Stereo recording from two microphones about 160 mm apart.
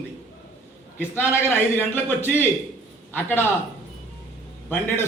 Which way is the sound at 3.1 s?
10° left (ahead or behind).